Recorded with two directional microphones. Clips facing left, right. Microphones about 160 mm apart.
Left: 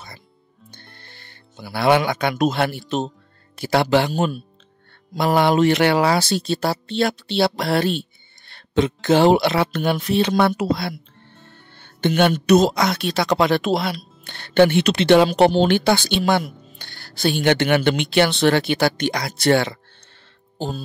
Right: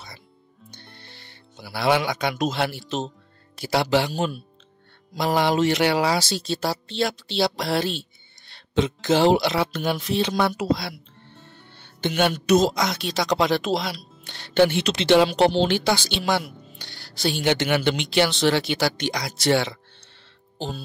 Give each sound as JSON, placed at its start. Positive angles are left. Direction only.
{"t": 0.7, "sound": "speech", "side_deg": 50}